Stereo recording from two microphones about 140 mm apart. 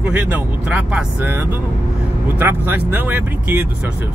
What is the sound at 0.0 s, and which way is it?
Speech, 10° right (ahead or behind).